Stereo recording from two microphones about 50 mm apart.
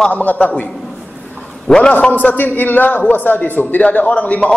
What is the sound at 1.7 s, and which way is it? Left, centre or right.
Speech, centre.